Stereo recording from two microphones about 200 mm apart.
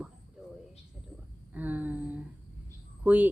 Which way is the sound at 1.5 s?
10° right (ahead or behind).